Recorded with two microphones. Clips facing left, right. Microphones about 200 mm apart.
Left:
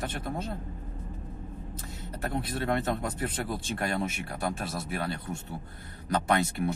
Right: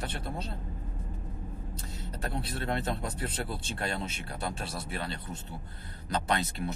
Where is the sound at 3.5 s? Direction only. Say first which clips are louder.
Left 4 dB; 50° left (ahead or behind).